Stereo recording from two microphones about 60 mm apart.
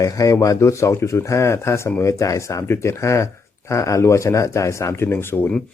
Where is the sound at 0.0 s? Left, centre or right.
Left.